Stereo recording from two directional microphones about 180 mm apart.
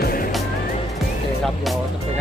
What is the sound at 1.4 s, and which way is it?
Speech, centre (ahead or behind).